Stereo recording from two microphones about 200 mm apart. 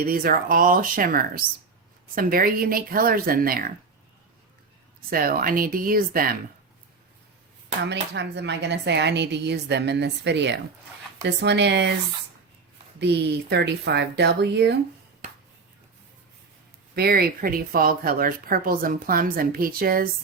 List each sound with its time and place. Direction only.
0.0 s speech: 45° right (ahead or behind)
5.1 s speech: 45° right (ahead or behind)
7.9 s speech: 60° right (ahead or behind)
13.0 s speech: 55° right (ahead or behind)
16.9 s speech: 50° right (ahead or behind)